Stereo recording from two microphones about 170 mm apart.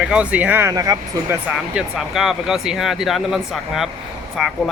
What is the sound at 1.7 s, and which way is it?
Speech, centre (ahead or behind).